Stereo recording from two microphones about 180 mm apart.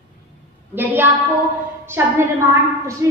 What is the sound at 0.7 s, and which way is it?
A woman's voice, 10° right (ahead or behind).